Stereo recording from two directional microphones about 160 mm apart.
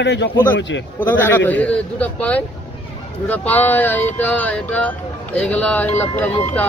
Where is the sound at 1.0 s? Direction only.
10° left (ahead or behind).